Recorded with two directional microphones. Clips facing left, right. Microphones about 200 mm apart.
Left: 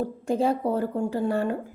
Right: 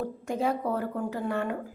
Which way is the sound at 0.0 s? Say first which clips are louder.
Left 5 dB; 30° left (ahead or behind).